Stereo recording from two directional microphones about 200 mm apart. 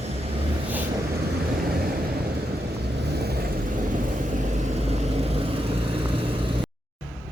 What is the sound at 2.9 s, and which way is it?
Vehicle, 55° right (ahead or behind).